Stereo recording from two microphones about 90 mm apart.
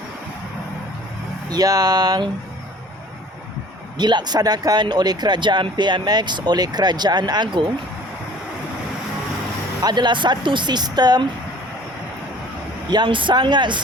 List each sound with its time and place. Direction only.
1.5 s speech: 45° right (ahead or behind)
3.9 s speech: 55° right (ahead or behind)
9.8 s speech: 55° right (ahead or behind)
12.9 s speech: 60° right (ahead or behind)